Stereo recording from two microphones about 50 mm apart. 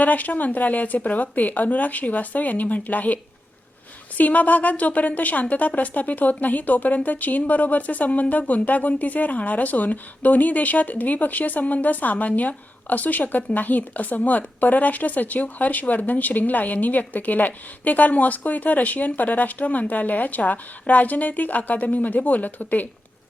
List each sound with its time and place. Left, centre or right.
0.0 s a woman's voice: left
4.2 s a woman's voice: left